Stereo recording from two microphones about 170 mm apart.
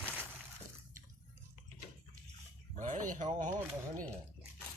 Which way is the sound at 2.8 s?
45° right (ahead or behind).